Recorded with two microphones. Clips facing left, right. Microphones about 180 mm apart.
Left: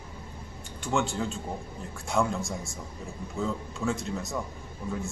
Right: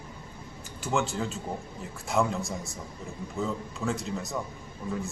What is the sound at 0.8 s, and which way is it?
A man's voice, centre (ahead or behind).